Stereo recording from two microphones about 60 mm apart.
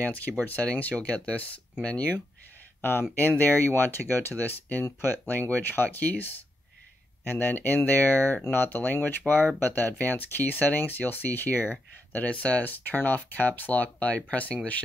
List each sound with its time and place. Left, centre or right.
0.0 s speech: left